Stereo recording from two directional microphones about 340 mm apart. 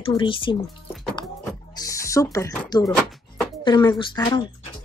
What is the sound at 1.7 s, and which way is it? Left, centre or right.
Speech, centre.